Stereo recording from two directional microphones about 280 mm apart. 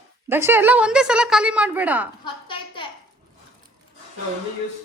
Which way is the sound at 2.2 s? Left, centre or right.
Centre.